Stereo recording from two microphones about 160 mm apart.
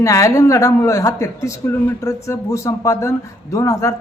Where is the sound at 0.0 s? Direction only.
20° left (ahead or behind).